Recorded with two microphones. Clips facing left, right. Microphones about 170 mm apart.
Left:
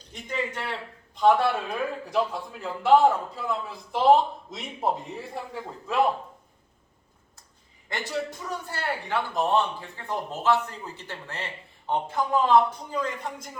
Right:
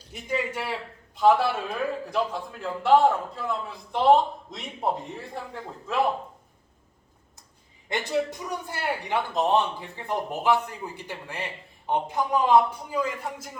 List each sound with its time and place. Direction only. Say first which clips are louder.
0.1 s a man's voice: right 2 dB; 10° right (ahead or behind)
7.9 s a man's voice: right 4 dB; 15° right (ahead or behind)